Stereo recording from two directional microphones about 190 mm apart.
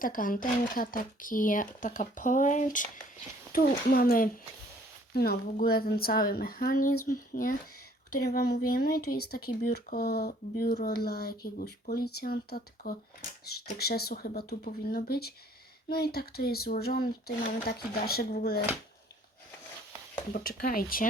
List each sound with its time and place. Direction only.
0.0 s speech: 45° left (ahead or behind)
20.3 s speech: 50° left (ahead or behind)